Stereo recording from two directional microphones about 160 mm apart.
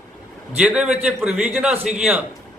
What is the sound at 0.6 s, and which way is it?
A man's voice, 5° right (ahead or behind).